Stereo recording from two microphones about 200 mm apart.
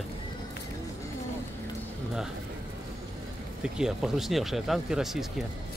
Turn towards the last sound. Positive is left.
turn(degrees=0)  # may be behind; listen again after turning